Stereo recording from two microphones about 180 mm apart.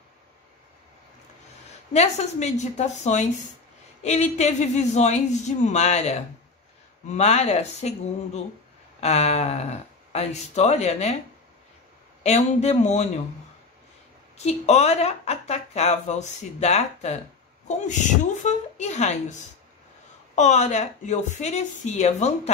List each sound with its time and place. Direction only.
2.0 s speech: 40° left (ahead or behind)
12.2 s speech: 40° left (ahead or behind)
14.4 s speech: 35° left (ahead or behind)
20.3 s speech: 40° left (ahead or behind)